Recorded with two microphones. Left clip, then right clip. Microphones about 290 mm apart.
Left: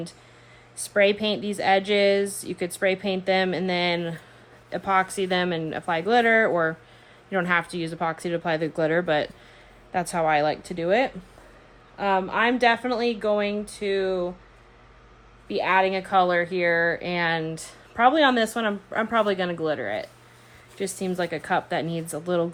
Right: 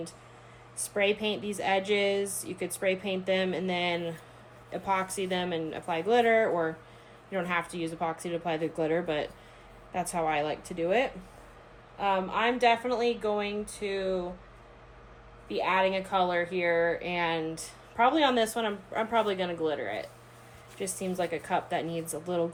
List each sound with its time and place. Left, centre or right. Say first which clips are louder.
0.9 s speech: left 7 dB; left
15.4 s speech: left 5 dB; left